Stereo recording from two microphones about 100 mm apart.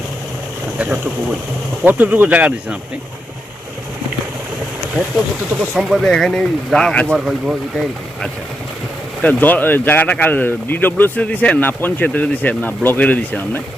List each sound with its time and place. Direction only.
0.8 s speech: 15° right (ahead or behind)
5.5 s speech: 5° right (ahead or behind)
9.2 s speech: 20° left (ahead or behind)